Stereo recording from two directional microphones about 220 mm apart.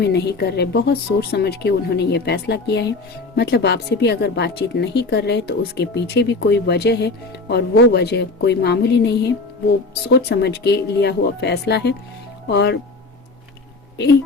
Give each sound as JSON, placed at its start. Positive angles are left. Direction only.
{"t": 0.0, "sound": "speech", "side_deg": 50}